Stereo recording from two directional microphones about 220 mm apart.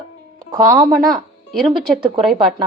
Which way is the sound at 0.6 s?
15° right (ahead or behind).